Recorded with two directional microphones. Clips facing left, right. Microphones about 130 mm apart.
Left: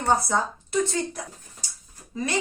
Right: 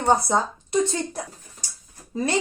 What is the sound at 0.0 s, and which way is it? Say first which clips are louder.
Speech: right 3 dB; 20° right (ahead or behind).